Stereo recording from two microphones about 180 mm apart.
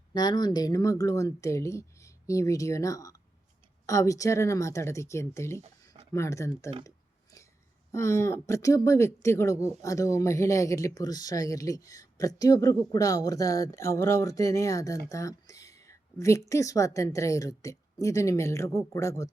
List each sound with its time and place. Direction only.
0.1 s speech: 25° left (ahead or behind)
7.9 s speech: 15° left (ahead or behind)
15.1 s a sound: 20° left (ahead or behind)
16.5 s speech: 15° left (ahead or behind)